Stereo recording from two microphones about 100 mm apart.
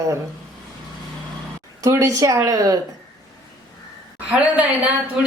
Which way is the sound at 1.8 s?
30° right (ahead or behind).